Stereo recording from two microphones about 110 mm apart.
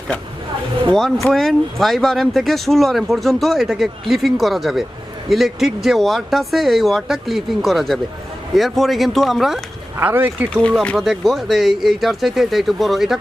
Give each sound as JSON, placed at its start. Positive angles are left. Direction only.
{"t": 0.9, "sound": "speech", "side_deg": 0}
{"t": 10.0, "sound": "speech", "side_deg": -20}
{"t": 10.5, "sound": "speech", "side_deg": 10}
{"t": 10.9, "sound": "speech", "side_deg": 0}